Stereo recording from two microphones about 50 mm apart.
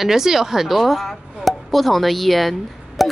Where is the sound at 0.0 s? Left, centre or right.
Centre.